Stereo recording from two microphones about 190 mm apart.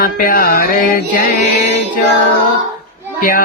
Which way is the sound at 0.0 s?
50° left (ahead or behind).